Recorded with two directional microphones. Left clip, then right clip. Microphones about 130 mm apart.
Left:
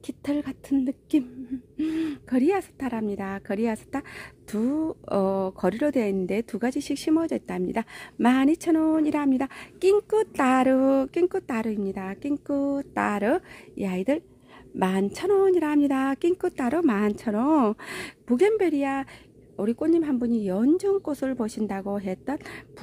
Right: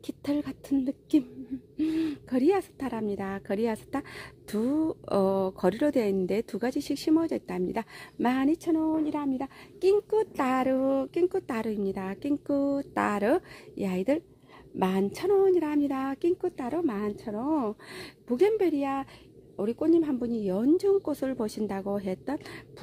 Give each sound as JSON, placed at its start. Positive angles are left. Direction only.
{"t": 0.0, "sound": "speech", "side_deg": 15}
{"t": 8.2, "sound": "speech", "side_deg": 35}
{"t": 8.7, "sound": "speech", "side_deg": 65}
{"t": 9.8, "sound": "speech", "side_deg": 40}
{"t": 11.2, "sound": "speech", "side_deg": 20}
{"t": 11.5, "sound": "speech", "side_deg": 5}
{"t": 17.9, "sound": "speech", "side_deg": 45}